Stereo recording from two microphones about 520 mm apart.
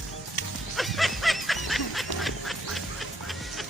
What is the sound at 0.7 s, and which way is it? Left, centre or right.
Snicker, centre.